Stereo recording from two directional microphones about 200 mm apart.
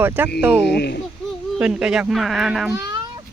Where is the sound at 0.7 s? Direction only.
55° left (ahead or behind).